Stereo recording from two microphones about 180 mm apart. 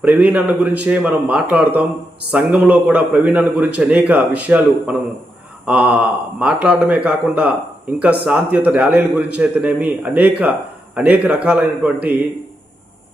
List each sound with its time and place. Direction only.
0.0 s a man's voice: 5° right (ahead or behind)